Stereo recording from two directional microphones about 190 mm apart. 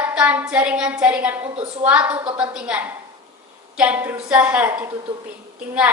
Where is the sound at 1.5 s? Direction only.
30° right (ahead or behind).